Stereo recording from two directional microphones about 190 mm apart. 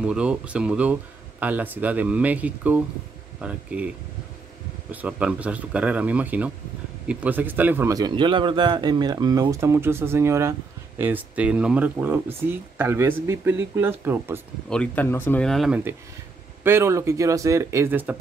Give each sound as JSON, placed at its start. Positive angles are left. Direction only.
{"t": 0.0, "sound": "speech", "side_deg": -5}
{"t": 4.9, "sound": "speech", "side_deg": -5}
{"t": 14.7, "sound": "speech", "side_deg": 5}
{"t": 16.6, "sound": "speech", "side_deg": -15}